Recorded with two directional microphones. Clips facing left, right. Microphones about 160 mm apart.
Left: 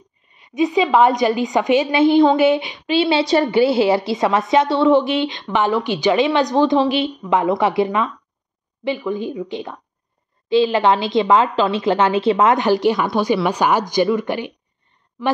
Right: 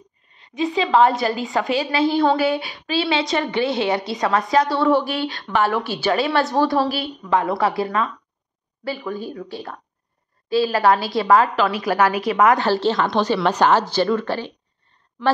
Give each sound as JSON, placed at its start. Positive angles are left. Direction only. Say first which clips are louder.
{"t": 0.4, "sound": "a woman's voice", "louder": "left 5 dB", "side_deg": 15}